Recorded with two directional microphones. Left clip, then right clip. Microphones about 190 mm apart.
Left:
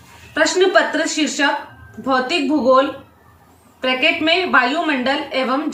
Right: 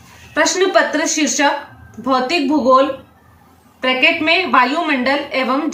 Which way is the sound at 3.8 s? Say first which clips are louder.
Right 2 dB; 10° right (ahead or behind).